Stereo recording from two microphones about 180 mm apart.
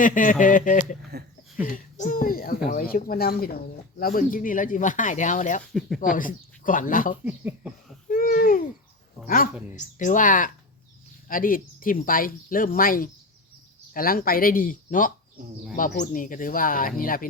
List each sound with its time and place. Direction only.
0.0 s a child's voice: 45° left (ahead or behind)
7.3 s speech: 10° right (ahead or behind)
8.0 s babbling: 50° left (ahead or behind)
9.2 s speech: 50° left (ahead or behind)